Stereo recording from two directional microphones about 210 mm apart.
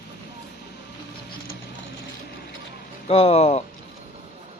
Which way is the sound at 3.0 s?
30° left (ahead or behind).